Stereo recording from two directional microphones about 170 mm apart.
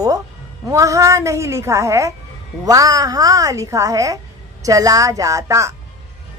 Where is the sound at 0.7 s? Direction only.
20° right (ahead or behind).